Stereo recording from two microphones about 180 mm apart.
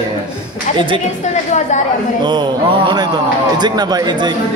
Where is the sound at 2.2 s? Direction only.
25° right (ahead or behind).